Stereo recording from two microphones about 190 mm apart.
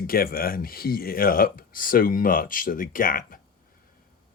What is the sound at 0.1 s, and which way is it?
Speech, 50° left (ahead or behind).